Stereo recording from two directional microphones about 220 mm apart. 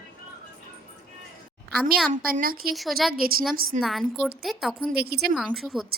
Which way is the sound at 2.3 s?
40° right (ahead or behind).